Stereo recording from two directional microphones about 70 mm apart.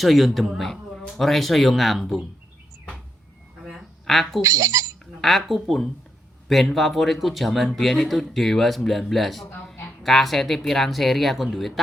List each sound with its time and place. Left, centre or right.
0.0 s speech: centre
3.6 s a sound: centre
4.4 s speech: right
5.2 s speech: centre